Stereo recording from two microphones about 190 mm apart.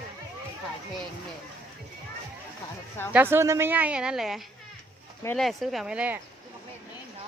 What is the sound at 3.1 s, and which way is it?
A woman's voice, 10° right (ahead or behind).